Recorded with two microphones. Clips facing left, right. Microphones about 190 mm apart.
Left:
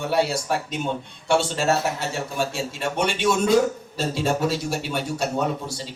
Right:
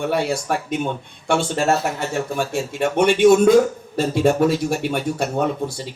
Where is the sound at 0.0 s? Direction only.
55° right (ahead or behind).